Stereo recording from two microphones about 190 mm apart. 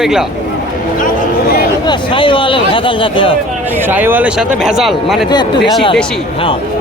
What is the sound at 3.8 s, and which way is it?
Speech, 10° right (ahead or behind).